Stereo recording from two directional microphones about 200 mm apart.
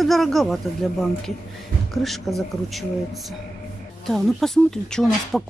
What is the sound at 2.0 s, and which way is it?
Speech, centre (ahead or behind).